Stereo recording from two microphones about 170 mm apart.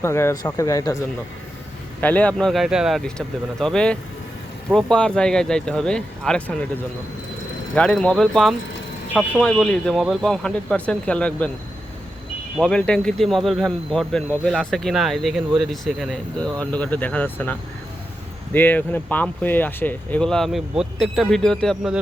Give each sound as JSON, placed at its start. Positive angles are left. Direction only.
{"t": 0.0, "sound": "speech", "side_deg": 15}
{"t": 2.0, "sound": "speech", "side_deg": 10}
{"t": 7.8, "sound": "speech", "side_deg": 5}
{"t": 12.5, "sound": "speech", "side_deg": 5}